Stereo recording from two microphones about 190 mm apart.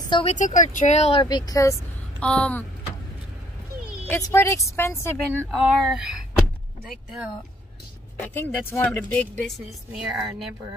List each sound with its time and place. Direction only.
0.1 s speech: 35° left (ahead or behind)
1.2 s a woman's voice: 20° left (ahead or behind)
4.1 s a woman's voice: 15° left (ahead or behind)
5.5 s speech: centre (ahead or behind)
8.2 s a woman's voice: 10° left (ahead or behind)
9.5 s a woman's voice: centre (ahead or behind)